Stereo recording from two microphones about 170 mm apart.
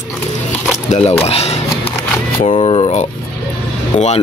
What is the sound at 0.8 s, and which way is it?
Speech, 40° left (ahead or behind).